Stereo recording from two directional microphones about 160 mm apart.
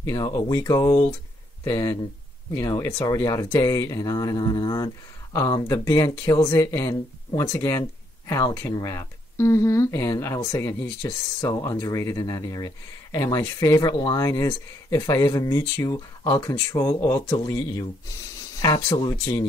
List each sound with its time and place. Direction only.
0.0 s speech: 20° left (ahead or behind)